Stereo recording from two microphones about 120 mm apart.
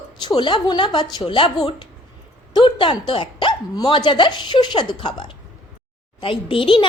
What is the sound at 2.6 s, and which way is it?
A woman's voice, 45° left (ahead or behind).